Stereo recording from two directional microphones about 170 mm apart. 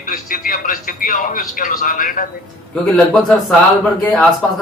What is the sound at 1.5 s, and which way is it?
Speech, 50° left (ahead or behind).